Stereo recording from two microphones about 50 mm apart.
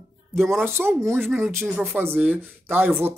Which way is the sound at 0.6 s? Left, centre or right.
Right.